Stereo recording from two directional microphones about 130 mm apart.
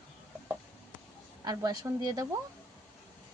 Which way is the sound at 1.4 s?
30° right (ahead or behind).